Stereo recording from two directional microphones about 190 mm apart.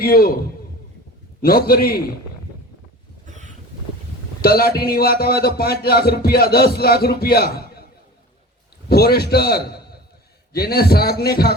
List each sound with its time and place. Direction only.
0.0 s a man's voice: 50° left (ahead or behind)
1.4 s a man's voice: 50° left (ahead or behind)
3.2 s boat: 40° right (ahead or behind)
4.4 s a man's voice: 50° left (ahead or behind)
8.9 s a man's voice: 55° left (ahead or behind)